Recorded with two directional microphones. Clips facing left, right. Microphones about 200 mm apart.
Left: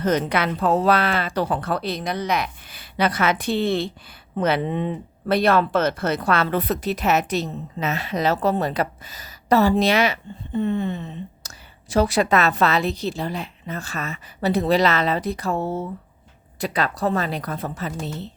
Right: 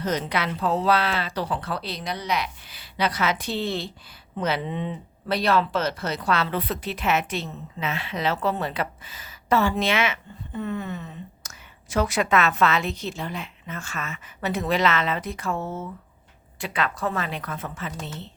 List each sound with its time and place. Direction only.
0.0 s speech: 55° left (ahead or behind); by 17.9 s 35° left (ahead or behind)